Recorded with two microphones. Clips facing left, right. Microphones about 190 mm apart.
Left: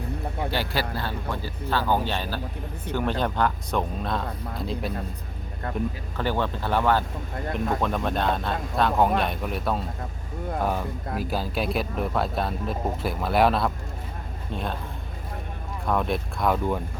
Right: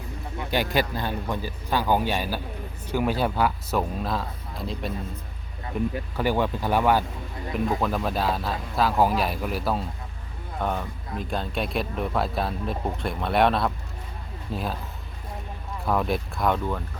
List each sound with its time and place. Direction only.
0.5 s speech: 15° right (ahead or behind); by 5.9 s centre (ahead or behind)
6.1 s speech: 10° right (ahead or behind)
15.9 s speech: centre (ahead or behind)